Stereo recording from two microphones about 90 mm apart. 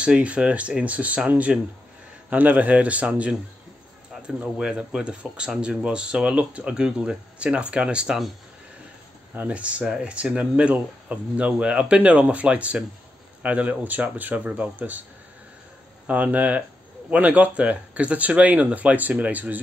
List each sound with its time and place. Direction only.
0.0 s speech: 15° right (ahead or behind)
4.4 s speech: 10° right (ahead or behind)
9.3 s speech: 15° right (ahead or behind)
16.1 s speech: 15° right (ahead or behind)